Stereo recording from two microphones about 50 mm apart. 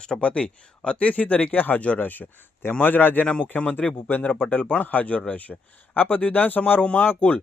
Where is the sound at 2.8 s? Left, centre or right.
Left.